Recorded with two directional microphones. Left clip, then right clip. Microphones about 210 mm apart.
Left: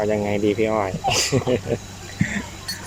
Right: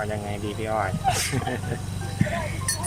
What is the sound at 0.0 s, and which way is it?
Speech, 25° left (ahead or behind).